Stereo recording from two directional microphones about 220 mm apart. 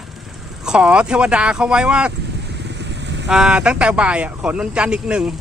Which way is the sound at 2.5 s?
50° right (ahead or behind).